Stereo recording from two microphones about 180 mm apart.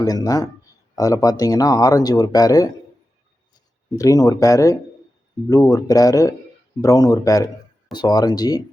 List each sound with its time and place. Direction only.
0.0 s speech: 20° left (ahead or behind)
3.9 s speech: 20° left (ahead or behind)